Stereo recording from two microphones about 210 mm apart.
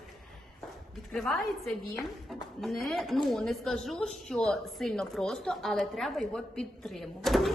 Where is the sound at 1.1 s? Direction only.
Centre (ahead or behind).